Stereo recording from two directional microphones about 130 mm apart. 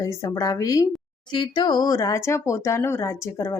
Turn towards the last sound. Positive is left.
turn(degrees=20)  # may be behind; listen again after turning